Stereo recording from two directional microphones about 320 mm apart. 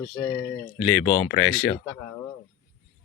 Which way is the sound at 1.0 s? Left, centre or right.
Centre.